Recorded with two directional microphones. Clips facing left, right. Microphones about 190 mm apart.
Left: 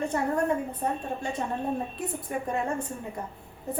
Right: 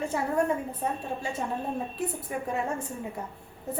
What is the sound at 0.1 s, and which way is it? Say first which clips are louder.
A woman's voice: left 1 dB; 5° right (ahead or behind).